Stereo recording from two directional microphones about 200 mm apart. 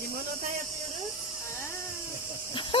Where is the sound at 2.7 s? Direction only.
25° left (ahead or behind).